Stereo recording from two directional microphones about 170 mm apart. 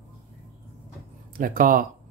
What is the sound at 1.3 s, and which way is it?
Speech, 55° right (ahead or behind).